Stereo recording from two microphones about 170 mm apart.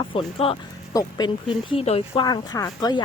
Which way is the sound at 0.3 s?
35° left (ahead or behind).